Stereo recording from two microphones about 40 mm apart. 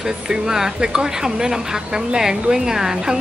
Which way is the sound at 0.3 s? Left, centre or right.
Centre.